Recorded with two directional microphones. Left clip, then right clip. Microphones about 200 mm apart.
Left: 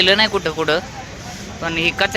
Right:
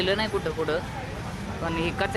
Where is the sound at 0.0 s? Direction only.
15° left (ahead or behind).